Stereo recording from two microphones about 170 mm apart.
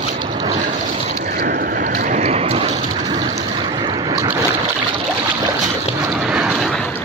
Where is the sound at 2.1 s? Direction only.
45° right (ahead or behind).